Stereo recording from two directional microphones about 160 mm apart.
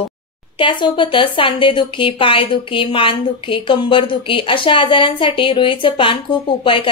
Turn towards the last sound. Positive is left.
turn(degrees=35)  # may be behind; listen again after turning